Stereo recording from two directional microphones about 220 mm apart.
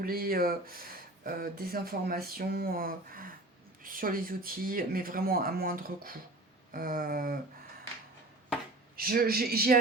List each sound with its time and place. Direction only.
0.0 s speech: 40° right (ahead or behind)
9.0 s speech: 40° right (ahead or behind)